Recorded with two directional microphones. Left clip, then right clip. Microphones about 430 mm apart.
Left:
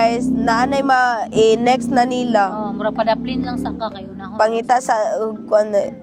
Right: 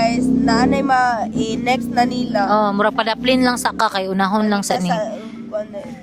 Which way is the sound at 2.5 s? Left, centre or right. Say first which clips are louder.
Right 6 dB; right.